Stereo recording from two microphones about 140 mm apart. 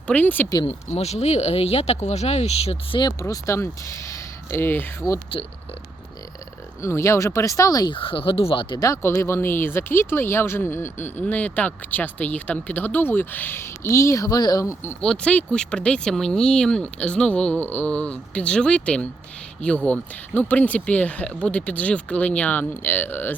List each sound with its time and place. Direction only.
0.1 s speech: 10° left (ahead or behind)
0.7 s speech: 50° left (ahead or behind)
3.0 s speech: 25° left (ahead or behind)
6.8 s speech: 20° left (ahead or behind)
7.9 s speech: 40° left (ahead or behind)
8.8 s speech: 20° left (ahead or behind)
15.0 s speech: 5° left (ahead or behind)